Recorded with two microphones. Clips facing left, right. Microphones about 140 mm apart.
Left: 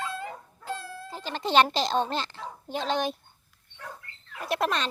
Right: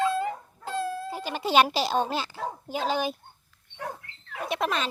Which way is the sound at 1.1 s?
10° right (ahead or behind).